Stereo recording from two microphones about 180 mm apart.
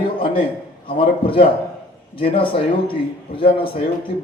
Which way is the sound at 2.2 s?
30° left (ahead or behind).